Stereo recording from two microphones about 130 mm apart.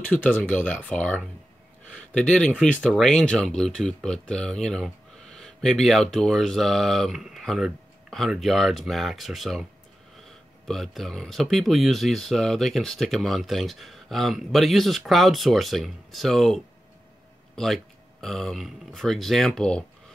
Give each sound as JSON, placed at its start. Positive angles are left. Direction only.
{"t": 0.4, "sound": "speech", "side_deg": 10}
{"t": 10.7, "sound": "speech", "side_deg": 0}